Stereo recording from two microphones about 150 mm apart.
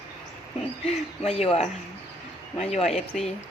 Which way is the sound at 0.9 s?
45° left (ahead or behind).